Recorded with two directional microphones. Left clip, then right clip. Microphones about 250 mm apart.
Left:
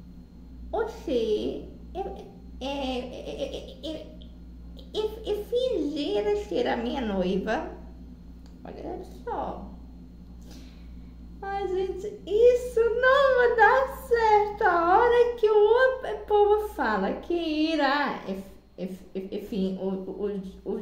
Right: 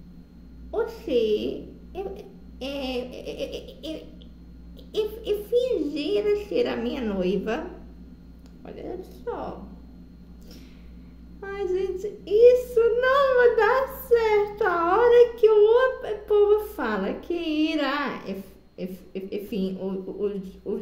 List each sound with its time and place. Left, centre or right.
1.0 s a woman's voice: centre
2.0 s babbling: centre
2.8 s a woman's voice: centre
3.3 s child singing: centre
4.9 s child singing: centre
9.2 s speech: centre
11.4 s child singing: centre
15.1 s a woman's voice: centre
19.6 s child singing: centre